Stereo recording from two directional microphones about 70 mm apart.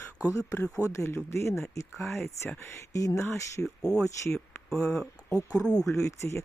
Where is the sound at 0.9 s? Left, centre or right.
Left.